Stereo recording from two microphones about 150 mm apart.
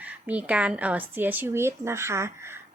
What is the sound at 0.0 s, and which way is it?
Speech, 10° right (ahead or behind).